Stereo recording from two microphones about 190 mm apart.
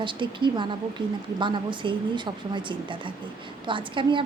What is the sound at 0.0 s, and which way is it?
A woman's voice, 25° right (ahead or behind).